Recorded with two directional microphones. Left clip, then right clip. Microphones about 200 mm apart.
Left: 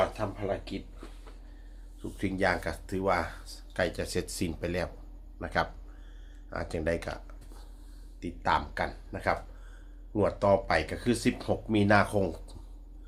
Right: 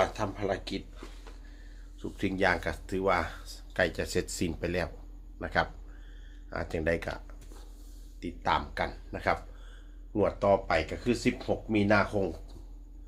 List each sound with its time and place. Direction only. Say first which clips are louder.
0.0 s speech: right 1 dB; 10° right (ahead or behind)
2.0 s speech: right 1 dB; 5° right (ahead or behind)
10.2 s speech: even; 10° left (ahead or behind)